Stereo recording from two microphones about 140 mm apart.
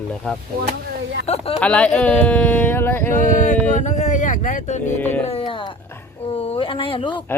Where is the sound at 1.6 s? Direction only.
10° left (ahead or behind).